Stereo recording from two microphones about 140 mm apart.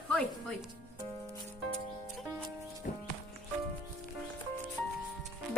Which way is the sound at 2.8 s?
90° left.